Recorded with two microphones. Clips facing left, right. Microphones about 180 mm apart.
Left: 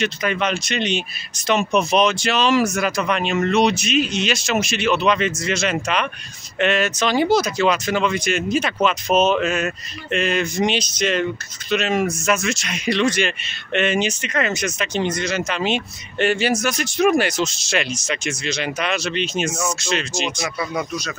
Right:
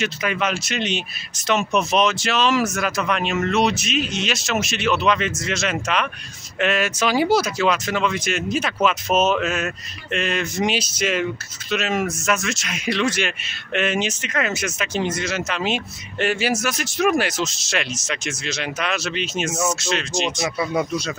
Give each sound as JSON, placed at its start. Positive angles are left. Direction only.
{"t": 0.0, "sound": "speech", "side_deg": -5}
{"t": 20.4, "sound": "speech", "side_deg": -25}